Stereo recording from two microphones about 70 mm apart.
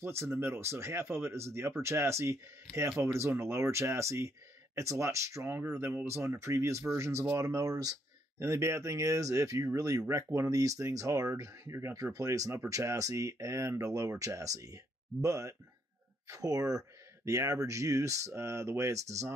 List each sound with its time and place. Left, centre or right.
0.0 s speech: right
8.4 s speech: right
12.0 s speech: right